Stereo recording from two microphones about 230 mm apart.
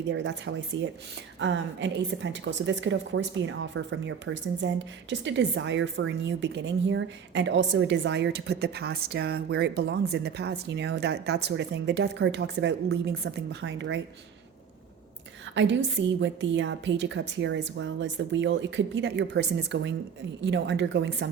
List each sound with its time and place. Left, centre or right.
0.1 s a woman's voice: right
15.5 s a woman's voice: right